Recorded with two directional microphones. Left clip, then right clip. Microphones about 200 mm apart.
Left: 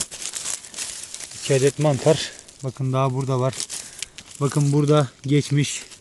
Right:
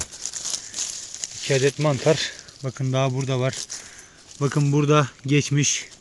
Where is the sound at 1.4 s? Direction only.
15° left (ahead or behind).